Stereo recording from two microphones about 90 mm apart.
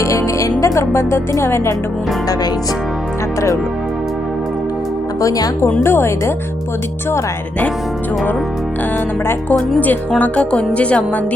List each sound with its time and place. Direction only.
0.0 s music: 35° left (ahead or behind)
0.6 s speech: 35° left (ahead or behind)
5.2 s speech: 40° left (ahead or behind)
5.8 s a woman's voice: 25° left (ahead or behind)
9.2 s music: 15° left (ahead or behind)